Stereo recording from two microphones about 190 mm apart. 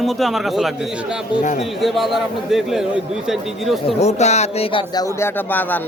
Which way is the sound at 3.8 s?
35° left (ahead or behind).